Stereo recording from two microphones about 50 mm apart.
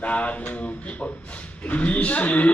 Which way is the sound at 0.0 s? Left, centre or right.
Left.